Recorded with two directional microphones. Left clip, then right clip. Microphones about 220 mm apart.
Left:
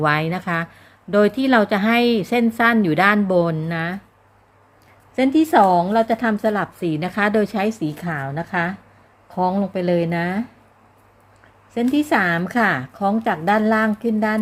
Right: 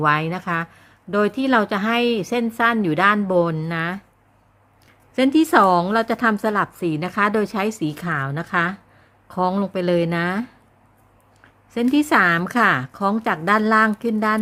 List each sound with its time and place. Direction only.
0.0 s speech: 10° right (ahead or behind)
5.1 s a woman's voice: 20° right (ahead or behind)
11.7 s a woman's voice: 20° right (ahead or behind)